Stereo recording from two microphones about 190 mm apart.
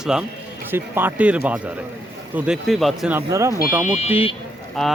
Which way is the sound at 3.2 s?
15° right (ahead or behind).